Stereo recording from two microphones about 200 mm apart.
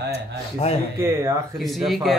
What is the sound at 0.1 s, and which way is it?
Speech, 30° left (ahead or behind).